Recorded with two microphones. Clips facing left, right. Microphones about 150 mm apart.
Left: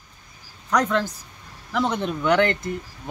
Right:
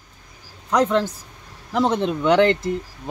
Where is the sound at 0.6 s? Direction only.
25° right (ahead or behind).